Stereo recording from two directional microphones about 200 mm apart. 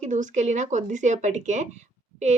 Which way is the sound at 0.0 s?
40° right (ahead or behind).